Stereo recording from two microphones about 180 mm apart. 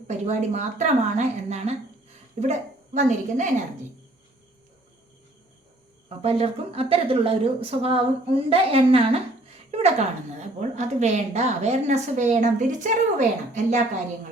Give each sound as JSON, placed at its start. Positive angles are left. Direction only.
{"t": 0.1, "sound": "a woman's voice", "side_deg": -40}
{"t": 6.1, "sound": "a woman's voice", "side_deg": -35}
{"t": 10.4, "sound": "a woman's voice", "side_deg": -40}